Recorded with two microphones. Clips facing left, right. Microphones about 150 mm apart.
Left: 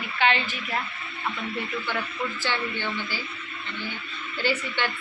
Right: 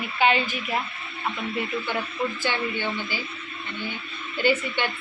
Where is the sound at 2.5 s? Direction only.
15° right (ahead or behind).